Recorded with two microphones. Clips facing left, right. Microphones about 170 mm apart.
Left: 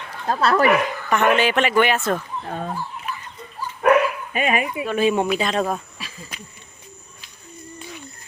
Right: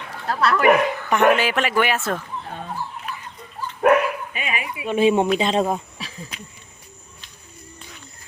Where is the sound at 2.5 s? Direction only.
50° left (ahead or behind).